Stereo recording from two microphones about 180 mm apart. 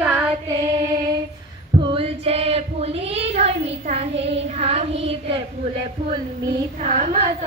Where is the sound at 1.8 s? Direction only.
30° right (ahead or behind).